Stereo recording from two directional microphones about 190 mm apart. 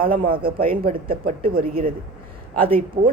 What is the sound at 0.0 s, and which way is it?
Speech, 50° right (ahead or behind).